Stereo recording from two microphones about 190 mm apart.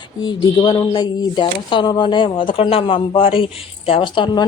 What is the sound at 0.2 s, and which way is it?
Speech, 25° left (ahead or behind).